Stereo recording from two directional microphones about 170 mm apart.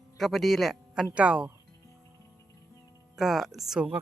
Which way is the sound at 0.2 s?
Centre (ahead or behind).